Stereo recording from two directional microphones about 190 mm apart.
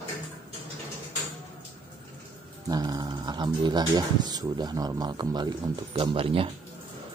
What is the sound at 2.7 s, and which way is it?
Speech, 20° right (ahead or behind).